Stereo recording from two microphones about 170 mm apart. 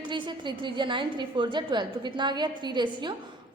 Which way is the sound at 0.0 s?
30° right (ahead or behind).